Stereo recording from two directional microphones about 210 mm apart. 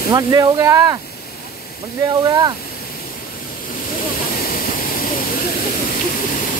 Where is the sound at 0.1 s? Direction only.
15° right (ahead or behind).